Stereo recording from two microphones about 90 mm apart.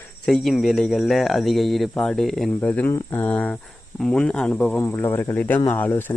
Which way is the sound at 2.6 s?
15° left (ahead or behind).